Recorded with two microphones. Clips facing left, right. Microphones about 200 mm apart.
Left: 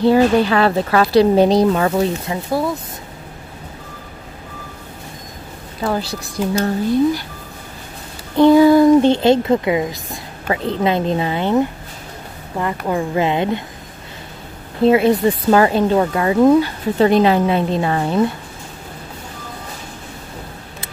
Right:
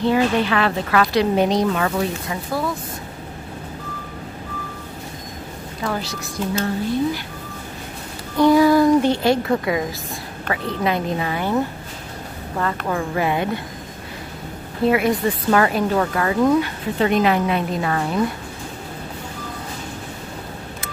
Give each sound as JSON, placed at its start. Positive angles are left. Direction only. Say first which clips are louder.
{"t": 0.0, "sound": "speech", "louder": "left 5 dB", "side_deg": 35}
{"t": 5.9, "sound": "speech", "louder": "left 5 dB", "side_deg": 30}
{"t": 8.4, "sound": "a woman's voice", "louder": "left 4 dB", "side_deg": 25}
{"t": 14.9, "sound": "a woman's voice", "louder": "left 5 dB", "side_deg": 25}